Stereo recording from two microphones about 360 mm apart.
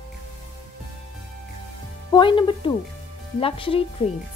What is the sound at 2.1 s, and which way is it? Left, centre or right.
Speech, centre.